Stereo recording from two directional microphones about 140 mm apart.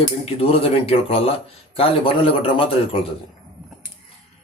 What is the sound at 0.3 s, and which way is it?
A man's voice, 45° left (ahead or behind).